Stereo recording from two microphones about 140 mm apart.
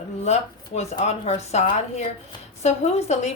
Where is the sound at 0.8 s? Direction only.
50° left (ahead or behind).